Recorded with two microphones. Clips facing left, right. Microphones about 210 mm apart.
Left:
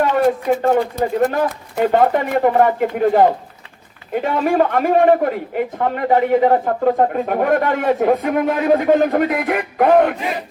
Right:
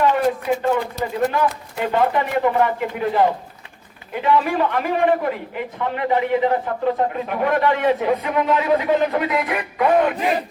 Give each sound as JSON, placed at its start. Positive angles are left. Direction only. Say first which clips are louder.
{"t": 0.0, "sound": "a man's voice", "louder": "left 3 dB", "side_deg": 45}